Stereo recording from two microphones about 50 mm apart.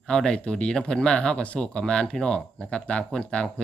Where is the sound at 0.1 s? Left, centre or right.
Centre.